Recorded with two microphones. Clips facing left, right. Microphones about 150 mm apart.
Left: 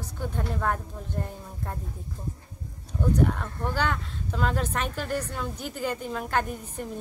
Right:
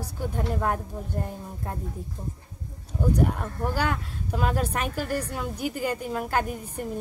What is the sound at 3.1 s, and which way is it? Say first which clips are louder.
Speech: left 1 dB; 10° right (ahead or behind).